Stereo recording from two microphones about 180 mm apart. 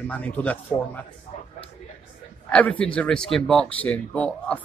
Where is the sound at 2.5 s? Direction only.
5° left (ahead or behind).